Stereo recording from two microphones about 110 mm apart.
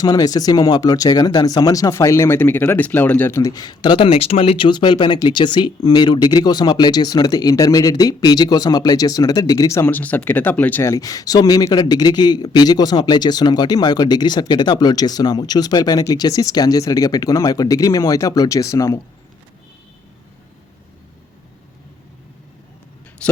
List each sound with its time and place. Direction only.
0.0 s a man's voice: 35° left (ahead or behind)
3.5 s a man's voice: 40° left (ahead or behind)
9.8 s speech: 15° left (ahead or behind)
10.8 s a man's voice: 35° left (ahead or behind)